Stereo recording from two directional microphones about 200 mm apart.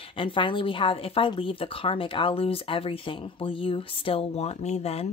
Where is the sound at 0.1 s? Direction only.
25° left (ahead or behind).